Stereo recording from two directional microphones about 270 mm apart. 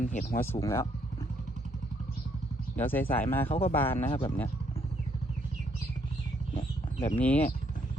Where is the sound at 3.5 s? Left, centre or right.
Left.